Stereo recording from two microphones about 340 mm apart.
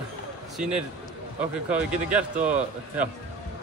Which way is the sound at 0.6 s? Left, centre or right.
Centre.